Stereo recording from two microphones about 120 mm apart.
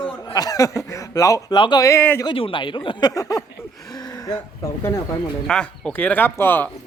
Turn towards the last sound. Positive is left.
turn(degrees=15)  # may be behind; listen again after turning